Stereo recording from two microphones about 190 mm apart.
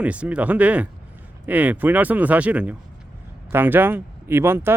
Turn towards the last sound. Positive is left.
turn(degrees=-15)  # may be behind; listen again after turning